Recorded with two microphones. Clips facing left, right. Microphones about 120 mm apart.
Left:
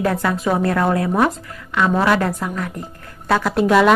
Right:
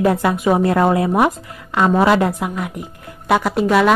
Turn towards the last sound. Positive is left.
turn(degrees=0)  # may be behind; listen again after turning